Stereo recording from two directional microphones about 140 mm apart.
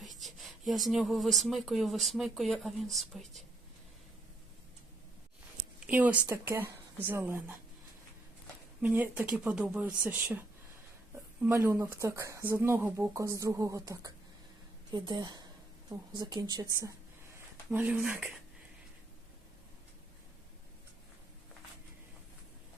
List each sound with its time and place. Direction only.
0.0 s speech: centre (ahead or behind)
5.9 s speech: 10° right (ahead or behind)
8.8 s speech: 10° right (ahead or behind)
11.4 s a woman's voice: 20° right (ahead or behind)
17.7 s speech: 10° right (ahead or behind)